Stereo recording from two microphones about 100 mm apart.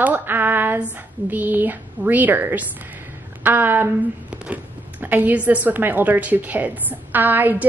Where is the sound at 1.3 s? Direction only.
20° right (ahead or behind).